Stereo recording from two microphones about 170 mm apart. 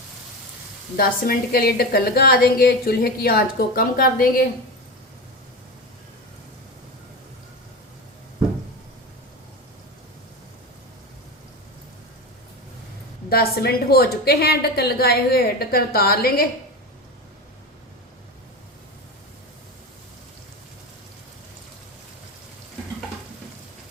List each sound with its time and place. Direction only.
0.9 s a woman's voice: 60° left (ahead or behind)
13.3 s a woman's voice: 65° left (ahead or behind)